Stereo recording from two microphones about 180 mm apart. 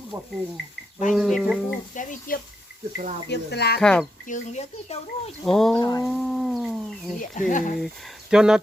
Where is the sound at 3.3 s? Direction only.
65° left (ahead or behind).